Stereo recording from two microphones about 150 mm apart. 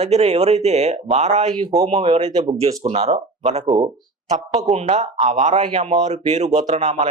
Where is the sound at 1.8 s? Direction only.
45° right (ahead or behind).